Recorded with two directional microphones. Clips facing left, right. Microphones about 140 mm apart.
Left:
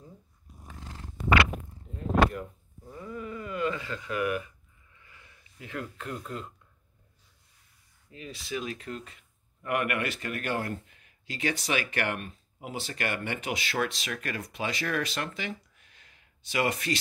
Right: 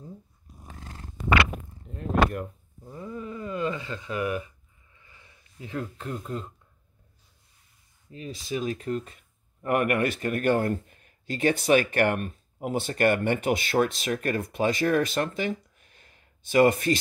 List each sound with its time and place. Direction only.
2.9 s speech: 20° right (ahead or behind)
8.1 s speech: 35° right (ahead or behind)